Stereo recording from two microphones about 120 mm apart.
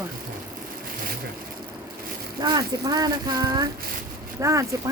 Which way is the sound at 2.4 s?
35° right (ahead or behind).